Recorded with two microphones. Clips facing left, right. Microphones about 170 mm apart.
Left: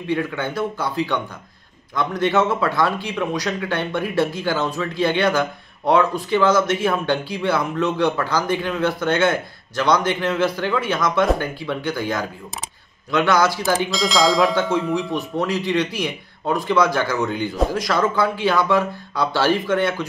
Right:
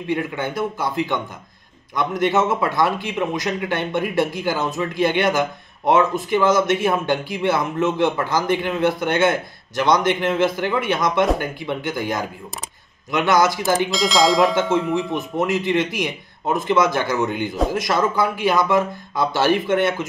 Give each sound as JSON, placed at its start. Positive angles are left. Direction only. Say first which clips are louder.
{"t": 0.1, "sound": "a man's voice", "louder": "left 1 dB", "side_deg": -20}
{"t": 13.8, "sound": "speech", "louder": "right 1 dB", "side_deg": 0}
{"t": 14.5, "sound": "a man's voice", "louder": "right 1 dB", "side_deg": -20}